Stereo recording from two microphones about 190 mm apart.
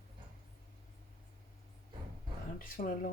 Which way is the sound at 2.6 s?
50° left (ahead or behind).